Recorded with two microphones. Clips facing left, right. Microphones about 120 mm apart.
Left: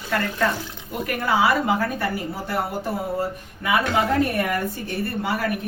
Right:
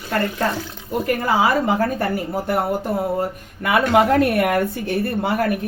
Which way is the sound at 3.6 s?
65° right (ahead or behind).